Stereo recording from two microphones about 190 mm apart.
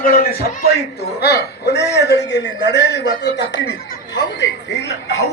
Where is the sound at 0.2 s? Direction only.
50° left (ahead or behind).